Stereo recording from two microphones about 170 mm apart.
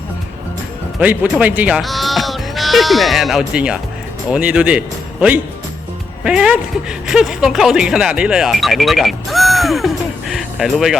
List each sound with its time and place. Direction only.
0.9 s speech: 10° right (ahead or behind)
6.2 s speech: 5° right (ahead or behind)